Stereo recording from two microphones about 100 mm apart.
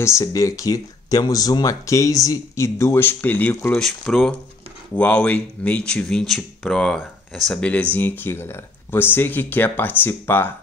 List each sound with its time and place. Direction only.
0.0 s speech: 35° left (ahead or behind); by 3.8 s 15° left (ahead or behind)
3.8 s speech: 5° left (ahead or behind); by 10.5 s 20° left (ahead or behind)